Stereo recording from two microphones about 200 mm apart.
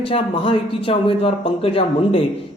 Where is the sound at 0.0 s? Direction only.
30° left (ahead or behind).